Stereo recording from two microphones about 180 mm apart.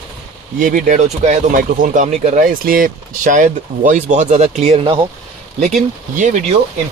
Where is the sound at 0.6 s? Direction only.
50° right (ahead or behind); by 5.0 s 30° right (ahead or behind).